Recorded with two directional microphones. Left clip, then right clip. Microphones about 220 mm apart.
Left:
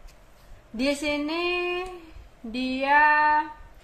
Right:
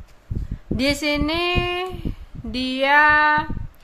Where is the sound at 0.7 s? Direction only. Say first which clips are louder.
Right 5 dB; 30° right (ahead or behind).